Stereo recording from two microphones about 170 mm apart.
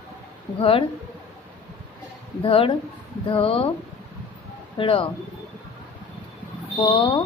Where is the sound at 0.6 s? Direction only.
35° left (ahead or behind).